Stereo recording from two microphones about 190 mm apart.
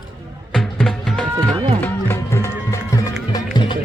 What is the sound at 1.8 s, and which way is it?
Music, 10° left (ahead or behind).